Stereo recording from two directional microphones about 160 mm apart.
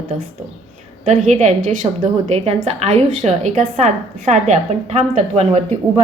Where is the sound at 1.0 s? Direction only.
45° right (ahead or behind).